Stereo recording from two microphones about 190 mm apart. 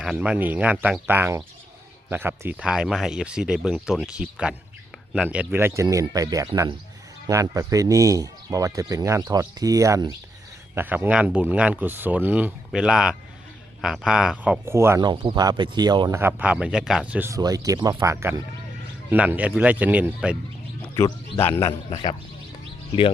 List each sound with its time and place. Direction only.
0.0 s speech: 5° right (ahead or behind)
20.8 s speech: 15° left (ahead or behind)
21.8 s a man's voice: 25° left (ahead or behind)